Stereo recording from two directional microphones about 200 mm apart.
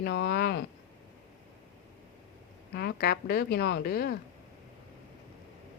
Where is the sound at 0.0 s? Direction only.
55° left (ahead or behind).